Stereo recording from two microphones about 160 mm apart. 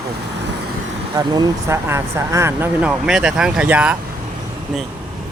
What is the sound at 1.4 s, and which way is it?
Speech, 15° right (ahead or behind).